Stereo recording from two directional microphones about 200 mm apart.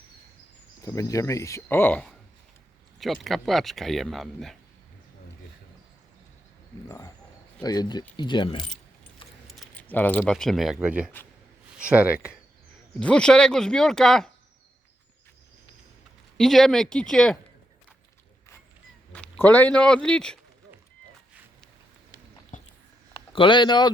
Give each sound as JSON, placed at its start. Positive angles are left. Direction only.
{"t": 0.8, "sound": "speech", "side_deg": 15}
{"t": 6.8, "sound": "speech", "side_deg": 20}
{"t": 9.5, "sound": "keys jangling", "side_deg": 0}
{"t": 9.9, "sound": "speech", "side_deg": 10}
{"t": 13.0, "sound": "speech", "side_deg": 5}
{"t": 16.4, "sound": "speech", "side_deg": 0}
{"t": 19.1, "sound": "a man's voice", "side_deg": 5}
{"t": 22.5, "sound": "a sound", "side_deg": 40}
{"t": 23.1, "sound": "speech", "side_deg": 25}